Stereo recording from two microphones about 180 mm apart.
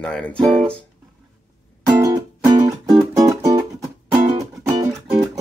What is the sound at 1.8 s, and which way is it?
Music, 20° right (ahead or behind).